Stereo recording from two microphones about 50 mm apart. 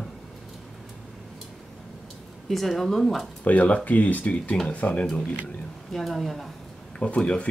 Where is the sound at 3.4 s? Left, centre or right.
Left.